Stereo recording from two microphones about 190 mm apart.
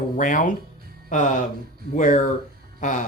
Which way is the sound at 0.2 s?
45° left (ahead or behind).